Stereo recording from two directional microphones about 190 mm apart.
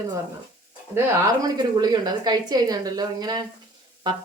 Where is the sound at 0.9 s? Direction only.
20° right (ahead or behind).